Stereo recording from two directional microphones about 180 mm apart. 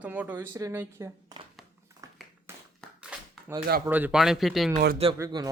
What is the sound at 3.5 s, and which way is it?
Speech, 10° right (ahead or behind).